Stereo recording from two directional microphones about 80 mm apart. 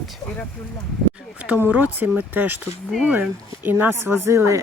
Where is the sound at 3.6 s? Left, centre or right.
Right.